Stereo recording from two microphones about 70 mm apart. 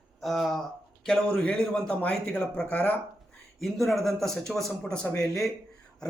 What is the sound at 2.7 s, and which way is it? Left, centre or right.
Speech, left.